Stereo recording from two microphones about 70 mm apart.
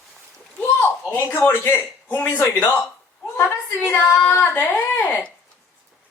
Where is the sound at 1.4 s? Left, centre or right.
Left.